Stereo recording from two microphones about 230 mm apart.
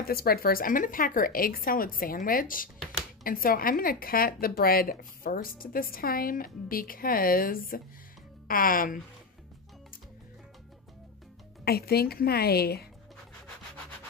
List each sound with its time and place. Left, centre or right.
0.1 s a woman's voice: left
11.6 s a woman's voice: left